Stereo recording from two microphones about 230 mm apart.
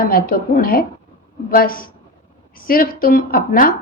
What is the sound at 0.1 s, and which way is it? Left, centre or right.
A woman's voice, left.